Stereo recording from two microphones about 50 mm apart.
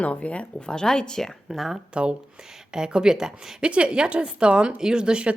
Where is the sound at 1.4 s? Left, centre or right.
Centre.